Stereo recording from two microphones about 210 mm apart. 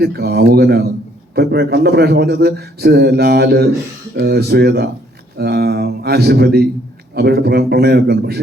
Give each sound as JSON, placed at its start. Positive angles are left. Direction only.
{"t": 0.0, "sound": "a man's voice", "side_deg": -50}